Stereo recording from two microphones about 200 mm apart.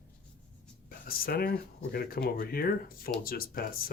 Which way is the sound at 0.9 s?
45° left (ahead or behind).